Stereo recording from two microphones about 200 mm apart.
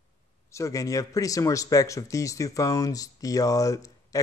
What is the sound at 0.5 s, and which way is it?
A man's voice, 15° left (ahead or behind).